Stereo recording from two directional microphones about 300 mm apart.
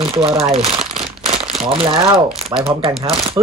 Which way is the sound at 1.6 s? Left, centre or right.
Centre.